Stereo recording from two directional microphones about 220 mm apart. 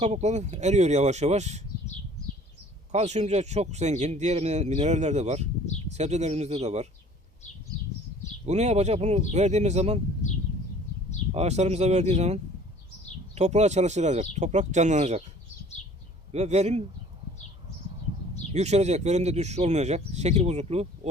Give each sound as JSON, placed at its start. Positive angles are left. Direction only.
{"t": 0.0, "sound": "speech", "side_deg": -30}
{"t": 2.9, "sound": "speech", "side_deg": -30}
{"t": 8.4, "sound": "speech", "side_deg": -30}
{"t": 11.3, "sound": "speech", "side_deg": -30}
{"t": 15.8, "sound": "a sound", "side_deg": 30}
{"t": 16.3, "sound": "speech", "side_deg": -30}
{"t": 18.5, "sound": "speech", "side_deg": -30}